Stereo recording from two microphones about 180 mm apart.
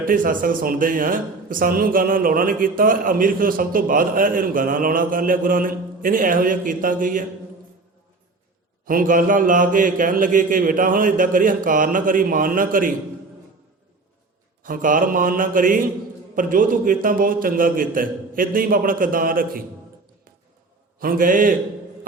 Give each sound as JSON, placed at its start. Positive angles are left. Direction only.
{"t": 0.0, "sound": "speech", "side_deg": -50}
{"t": 8.8, "sound": "speech", "side_deg": -50}
{"t": 14.6, "sound": "speech", "side_deg": -50}
{"t": 21.0, "sound": "speech", "side_deg": -50}